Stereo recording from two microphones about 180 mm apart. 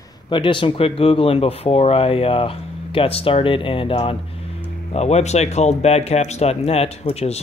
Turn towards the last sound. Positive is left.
turn(degrees=35)  # may be behind; listen again after turning